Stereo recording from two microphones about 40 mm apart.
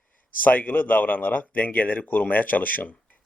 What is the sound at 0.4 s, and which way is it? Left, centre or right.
Speech, left.